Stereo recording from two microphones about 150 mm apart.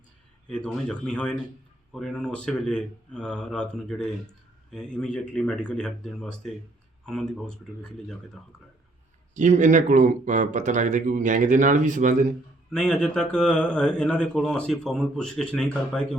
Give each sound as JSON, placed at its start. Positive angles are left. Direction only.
{"t": 0.4, "sound": "speech", "side_deg": 5}
{"t": 9.3, "sound": "speech", "side_deg": -55}
{"t": 12.7, "sound": "speech", "side_deg": 5}